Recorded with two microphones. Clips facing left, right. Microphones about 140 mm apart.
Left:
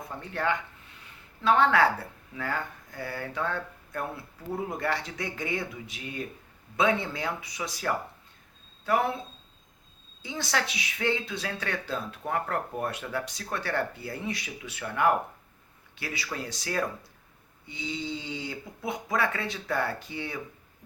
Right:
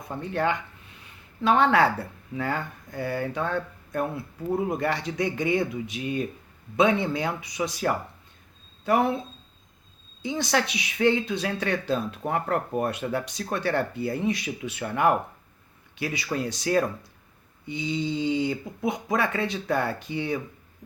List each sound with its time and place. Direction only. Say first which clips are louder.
0.2 s speech: right 4 dB; 20° right (ahead or behind)
10.2 s speech: right 5 dB; 20° right (ahead or behind)